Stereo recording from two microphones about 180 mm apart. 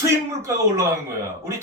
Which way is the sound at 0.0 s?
15° right (ahead or behind).